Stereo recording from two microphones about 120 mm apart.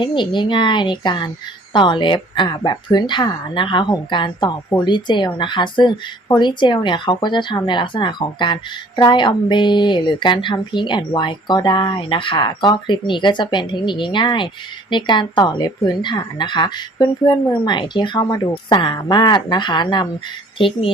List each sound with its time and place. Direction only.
0.0 s speech: 40° left (ahead or behind)